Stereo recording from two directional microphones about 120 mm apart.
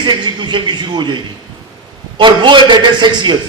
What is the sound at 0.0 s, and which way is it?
A man's voice, 40° right (ahead or behind).